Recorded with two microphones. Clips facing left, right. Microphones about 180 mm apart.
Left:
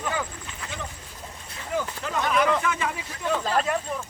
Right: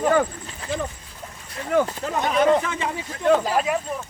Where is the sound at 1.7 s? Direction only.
60° right (ahead or behind).